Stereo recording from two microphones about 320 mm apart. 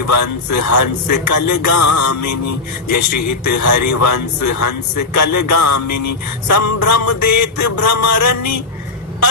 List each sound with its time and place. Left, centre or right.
0.0 s a man's voice: left